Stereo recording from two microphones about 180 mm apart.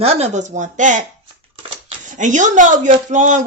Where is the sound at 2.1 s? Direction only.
45° right (ahead or behind).